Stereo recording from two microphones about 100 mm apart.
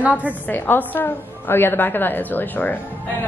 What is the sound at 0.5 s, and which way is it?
A woman's voice, 20° left (ahead or behind).